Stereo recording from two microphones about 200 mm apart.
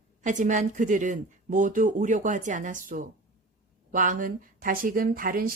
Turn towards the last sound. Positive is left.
turn(degrees=-45)  # may be behind; listen again after turning